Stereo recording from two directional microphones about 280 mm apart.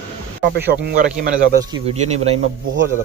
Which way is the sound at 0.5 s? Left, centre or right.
Right.